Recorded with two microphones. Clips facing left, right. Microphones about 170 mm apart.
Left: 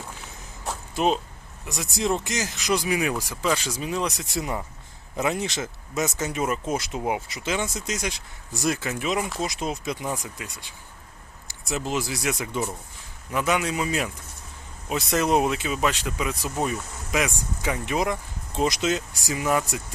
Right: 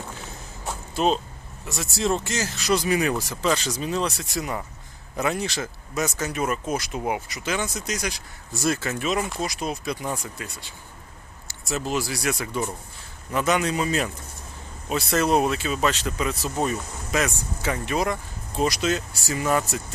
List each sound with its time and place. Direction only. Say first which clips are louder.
0.9 s speech: right 1 dB; 15° left (ahead or behind)